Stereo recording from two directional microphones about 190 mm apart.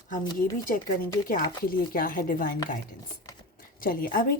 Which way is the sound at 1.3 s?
45° left (ahead or behind).